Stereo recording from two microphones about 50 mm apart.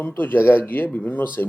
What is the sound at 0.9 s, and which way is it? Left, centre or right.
Speech, left.